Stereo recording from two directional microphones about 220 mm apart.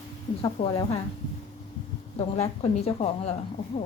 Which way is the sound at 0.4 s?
25° left (ahead or behind).